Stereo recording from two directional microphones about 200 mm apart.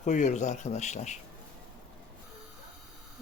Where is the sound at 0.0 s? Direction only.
40° left (ahead or behind).